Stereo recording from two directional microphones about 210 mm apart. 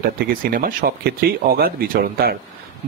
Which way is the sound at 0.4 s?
40° right (ahead or behind).